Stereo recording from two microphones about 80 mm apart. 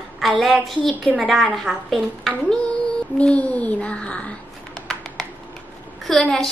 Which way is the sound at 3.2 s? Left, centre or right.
Centre.